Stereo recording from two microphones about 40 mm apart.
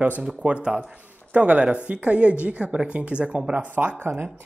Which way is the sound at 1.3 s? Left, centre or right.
Right.